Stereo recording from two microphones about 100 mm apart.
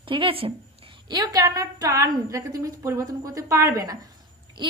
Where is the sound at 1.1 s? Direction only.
40° right (ahead or behind).